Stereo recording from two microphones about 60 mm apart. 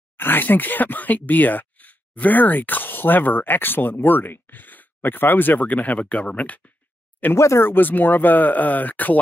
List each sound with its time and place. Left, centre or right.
0.2 s speech: left
7.3 s speech: left